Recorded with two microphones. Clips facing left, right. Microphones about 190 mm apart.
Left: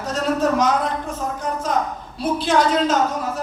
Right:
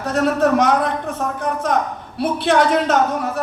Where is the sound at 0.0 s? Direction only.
60° right (ahead or behind).